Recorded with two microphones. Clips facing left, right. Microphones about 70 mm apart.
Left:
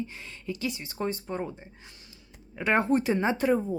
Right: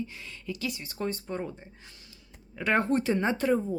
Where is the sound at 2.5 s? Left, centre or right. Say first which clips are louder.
Left 1 dB; centre.